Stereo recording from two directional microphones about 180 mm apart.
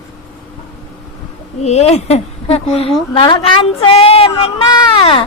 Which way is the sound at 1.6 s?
35° left (ahead or behind).